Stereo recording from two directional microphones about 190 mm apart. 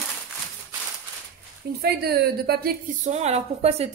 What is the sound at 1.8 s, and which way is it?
A woman's voice, 55° right (ahead or behind).